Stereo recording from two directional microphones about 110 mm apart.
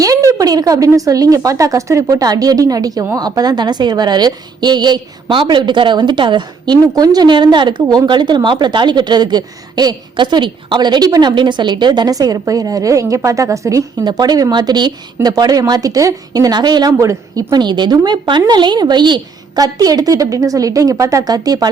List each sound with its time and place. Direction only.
0.3 s speech: 35° right (ahead or behind)